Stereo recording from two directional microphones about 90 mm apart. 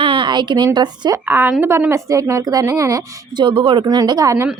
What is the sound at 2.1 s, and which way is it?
Speech, 40° right (ahead or behind).